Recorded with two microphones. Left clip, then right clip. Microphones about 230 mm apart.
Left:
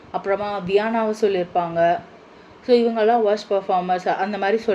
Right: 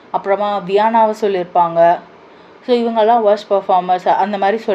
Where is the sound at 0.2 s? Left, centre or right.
Centre.